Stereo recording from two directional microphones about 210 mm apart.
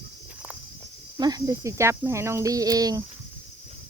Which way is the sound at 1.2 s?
20° right (ahead or behind).